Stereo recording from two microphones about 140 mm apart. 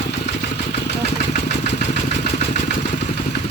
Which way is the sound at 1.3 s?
60° left (ahead or behind).